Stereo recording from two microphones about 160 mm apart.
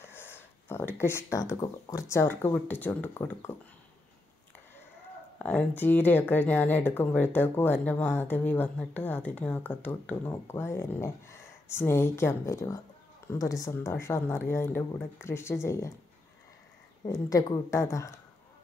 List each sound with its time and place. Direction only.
0.0 s speech: 15° left (ahead or behind)
5.4 s speech: 10° left (ahead or behind)
17.0 s speech: 20° left (ahead or behind)